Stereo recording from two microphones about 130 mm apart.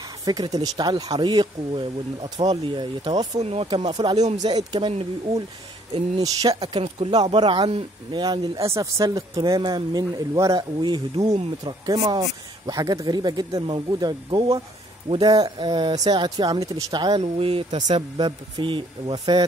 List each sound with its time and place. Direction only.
0.2 s speech: 30° right (ahead or behind)
3.3 s speech: 50° right (ahead or behind)
6.1 s speech: 30° right (ahead or behind)
10.8 s speech: 35° right (ahead or behind)
17.2 s speech: 45° right (ahead or behind)